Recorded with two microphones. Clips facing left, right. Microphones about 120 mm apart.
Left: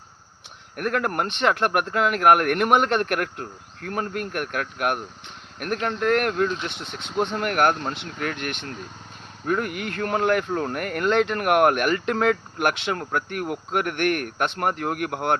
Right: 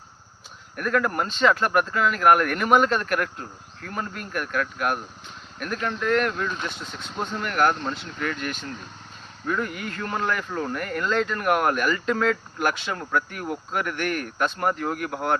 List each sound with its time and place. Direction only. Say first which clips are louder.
0.8 s speech: even; 60° left (ahead or behind)
6.7 s speech: left 1 dB; 65° left (ahead or behind)